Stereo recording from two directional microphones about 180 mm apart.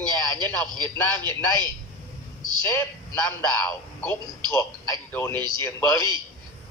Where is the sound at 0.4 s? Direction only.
10° left (ahead or behind).